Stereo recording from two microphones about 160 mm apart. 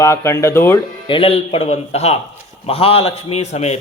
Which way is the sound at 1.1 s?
35° left (ahead or behind).